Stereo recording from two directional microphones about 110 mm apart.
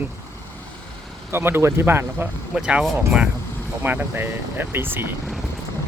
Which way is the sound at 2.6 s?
10° right (ahead or behind).